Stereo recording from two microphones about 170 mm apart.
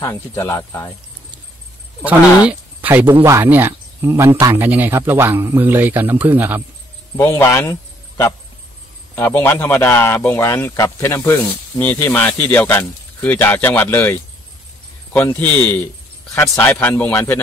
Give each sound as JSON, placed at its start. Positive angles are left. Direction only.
{"t": 0.0, "sound": "speech", "side_deg": 15}
{"t": 2.0, "sound": "speech", "side_deg": -10}
{"t": 7.2, "sound": "speech", "side_deg": 15}
{"t": 9.1, "sound": "speech", "side_deg": 10}
{"t": 15.1, "sound": "speech", "side_deg": 10}